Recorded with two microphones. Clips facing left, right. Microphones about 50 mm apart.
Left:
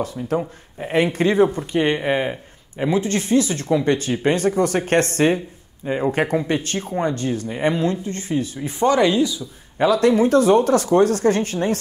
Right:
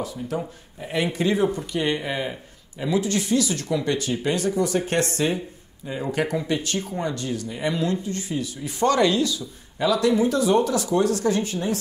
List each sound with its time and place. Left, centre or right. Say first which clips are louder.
0.0 s speech: left 5 dB; left
8.7 s speech: left 3 dB; left
9.8 s speech: left 4 dB; left